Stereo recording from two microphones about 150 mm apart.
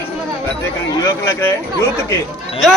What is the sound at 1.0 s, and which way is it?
Speech, 20° left (ahead or behind).